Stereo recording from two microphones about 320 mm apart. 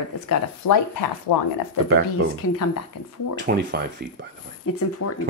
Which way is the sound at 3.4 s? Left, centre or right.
Right.